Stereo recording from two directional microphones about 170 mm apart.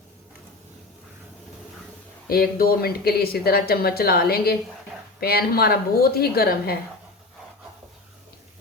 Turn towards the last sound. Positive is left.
turn(degrees=65)  # may be behind; listen again after turning